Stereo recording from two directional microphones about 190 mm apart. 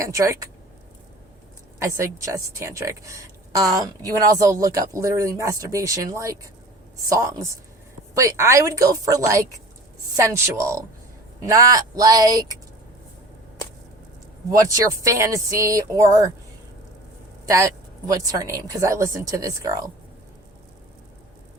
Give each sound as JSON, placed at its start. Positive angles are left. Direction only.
{"t": 0.0, "sound": "a woman's voice", "side_deg": -15}
{"t": 1.8, "sound": "a woman's voice", "side_deg": -15}
{"t": 14.5, "sound": "a woman's voice", "side_deg": -20}
{"t": 17.4, "sound": "a woman's voice", "side_deg": -15}